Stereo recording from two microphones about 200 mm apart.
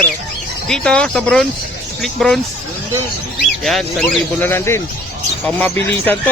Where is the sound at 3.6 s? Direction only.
Centre (ahead or behind).